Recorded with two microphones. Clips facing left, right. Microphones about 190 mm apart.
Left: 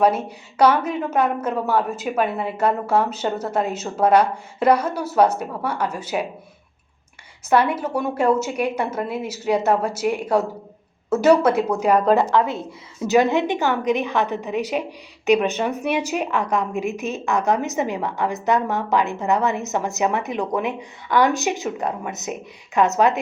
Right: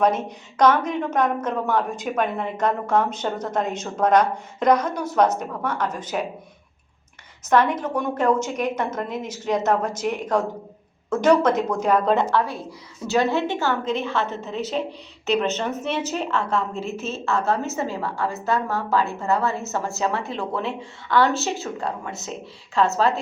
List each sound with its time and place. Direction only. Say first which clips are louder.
0.0 s a woman's voice: left 2 dB; 10° left (ahead or behind)
7.4 s a woman's voice: left 1 dB; 10° left (ahead or behind)
12.4 s a woman's voice: left 3 dB; 20° left (ahead or behind)